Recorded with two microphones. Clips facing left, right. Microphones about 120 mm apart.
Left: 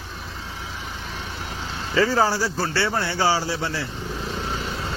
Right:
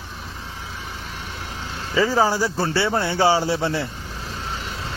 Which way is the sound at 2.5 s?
25° right (ahead or behind).